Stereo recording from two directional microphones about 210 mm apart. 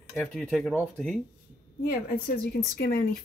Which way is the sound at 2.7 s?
45° left (ahead or behind).